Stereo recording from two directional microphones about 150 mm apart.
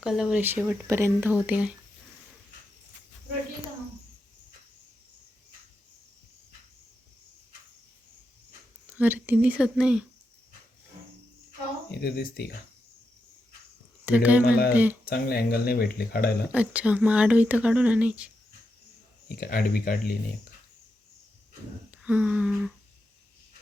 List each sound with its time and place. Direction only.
0.0 s speech: 5° right (ahead or behind)
8.9 s speech: 10° right (ahead or behind)
11.9 s speech: 90° left
14.0 s speech: 10° right (ahead or behind)
14.4 s speech: 90° left
14.7 s speech: 10° right (ahead or behind)
15.1 s speech: 90° left
16.5 s speech: 10° right (ahead or behind)
19.4 s speech: 80° left
22.0 s speech: 5° right (ahead or behind)